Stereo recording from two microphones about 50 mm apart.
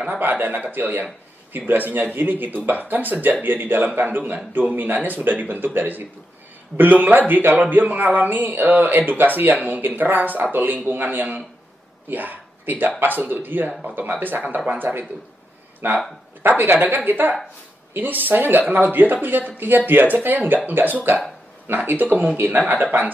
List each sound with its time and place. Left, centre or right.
0.1 s speech: right
15.8 s a woman's voice: right